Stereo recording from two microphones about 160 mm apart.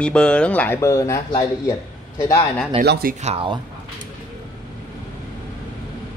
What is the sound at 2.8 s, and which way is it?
Speech, 70° right (ahead or behind).